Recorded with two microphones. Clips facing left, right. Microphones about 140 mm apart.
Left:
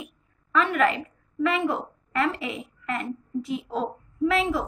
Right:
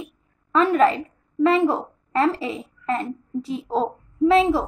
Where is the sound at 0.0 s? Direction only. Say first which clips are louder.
Right 4 dB; 30° right (ahead or behind).